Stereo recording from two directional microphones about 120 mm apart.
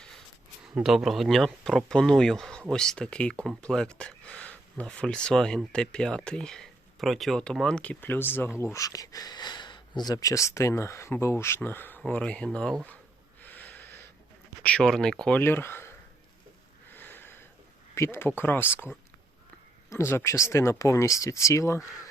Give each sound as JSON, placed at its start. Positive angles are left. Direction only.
{"t": 0.8, "sound": "speech", "side_deg": 0}
{"t": 13.4, "sound": "snort", "side_deg": 15}
{"t": 14.6, "sound": "speech", "side_deg": 10}
{"t": 15.4, "sound": "speech", "side_deg": 20}
{"t": 16.9, "sound": "sniff", "side_deg": 15}
{"t": 17.9, "sound": "speech", "side_deg": 20}